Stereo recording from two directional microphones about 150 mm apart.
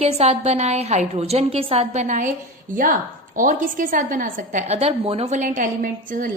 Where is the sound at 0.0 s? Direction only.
45° right (ahead or behind).